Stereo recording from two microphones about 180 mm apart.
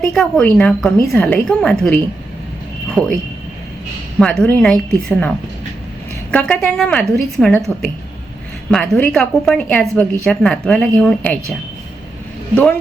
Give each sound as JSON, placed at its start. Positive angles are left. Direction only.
{"t": 0.1, "sound": "a woman's voice", "side_deg": 5}
{"t": 4.2, "sound": "a woman's voice", "side_deg": 5}
{"t": 6.3, "sound": "a woman's voice", "side_deg": 5}